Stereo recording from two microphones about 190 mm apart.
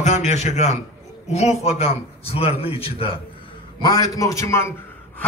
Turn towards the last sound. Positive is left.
turn(degrees=15)  # may be behind; listen again after turning